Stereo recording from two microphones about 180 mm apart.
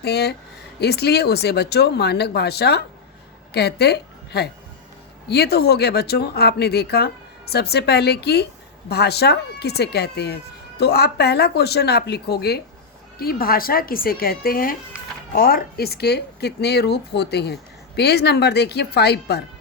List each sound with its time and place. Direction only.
0.0 s a woman's voice: 65° left (ahead or behind)